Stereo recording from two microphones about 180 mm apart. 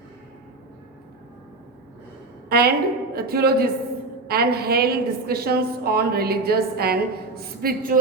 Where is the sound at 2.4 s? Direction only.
60° right (ahead or behind).